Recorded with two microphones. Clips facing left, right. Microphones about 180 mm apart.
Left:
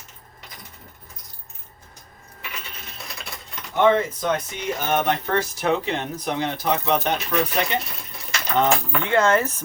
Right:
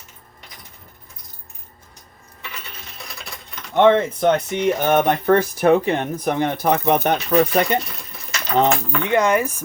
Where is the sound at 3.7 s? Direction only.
60° right (ahead or behind).